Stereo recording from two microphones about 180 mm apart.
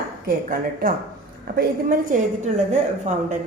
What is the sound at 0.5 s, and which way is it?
A woman's voice, 50° right (ahead or behind).